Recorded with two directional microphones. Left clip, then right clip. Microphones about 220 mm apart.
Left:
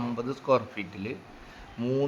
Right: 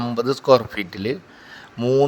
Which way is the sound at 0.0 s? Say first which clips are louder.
Right 11 dB; 30° right (ahead or behind).